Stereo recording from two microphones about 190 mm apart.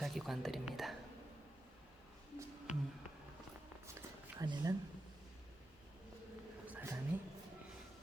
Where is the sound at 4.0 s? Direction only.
20° right (ahead or behind).